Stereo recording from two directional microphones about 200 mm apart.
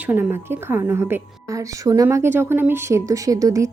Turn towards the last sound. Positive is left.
turn(degrees=-15)  # may be behind; listen again after turning